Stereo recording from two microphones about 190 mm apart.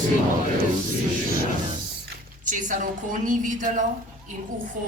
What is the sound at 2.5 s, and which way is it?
A woman's voice, 45° right (ahead or behind).